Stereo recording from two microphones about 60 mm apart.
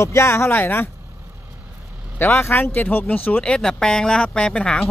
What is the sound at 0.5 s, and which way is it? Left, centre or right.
Speech, left.